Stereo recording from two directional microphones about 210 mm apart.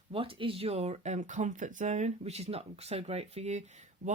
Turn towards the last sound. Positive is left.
turn(degrees=-30)  # may be behind; listen again after turning